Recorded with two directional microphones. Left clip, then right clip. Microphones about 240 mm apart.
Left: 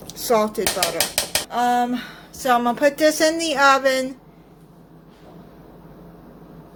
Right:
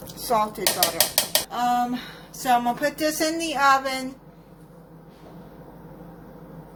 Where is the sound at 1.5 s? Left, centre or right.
Centre.